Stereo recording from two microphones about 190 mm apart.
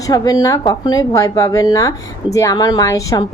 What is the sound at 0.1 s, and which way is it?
Speech, 20° left (ahead or behind).